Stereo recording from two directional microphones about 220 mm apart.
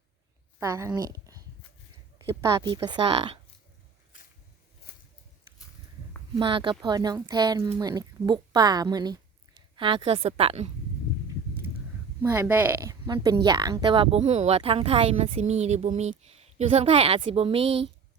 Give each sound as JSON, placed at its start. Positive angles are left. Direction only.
{"t": 0.6, "sound": "a woman's voice", "side_deg": -15}
{"t": 6.3, "sound": "a woman's voice", "side_deg": -25}
{"t": 12.2, "sound": "a woman's voice", "side_deg": -10}